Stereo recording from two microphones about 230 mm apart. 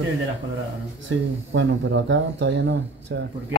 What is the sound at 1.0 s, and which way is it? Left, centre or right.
Speech, right.